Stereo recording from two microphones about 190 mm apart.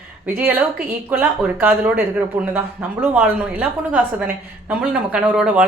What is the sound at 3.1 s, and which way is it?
A woman's voice, 5° right (ahead or behind).